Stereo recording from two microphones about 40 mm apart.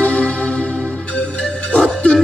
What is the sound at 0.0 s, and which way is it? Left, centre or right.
Music, left.